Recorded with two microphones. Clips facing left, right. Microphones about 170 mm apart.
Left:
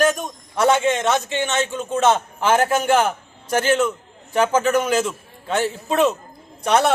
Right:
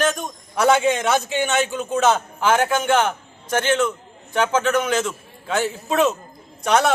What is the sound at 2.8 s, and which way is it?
Speech, 35° left (ahead or behind).